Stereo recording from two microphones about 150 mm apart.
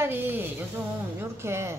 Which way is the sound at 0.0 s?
15° right (ahead or behind).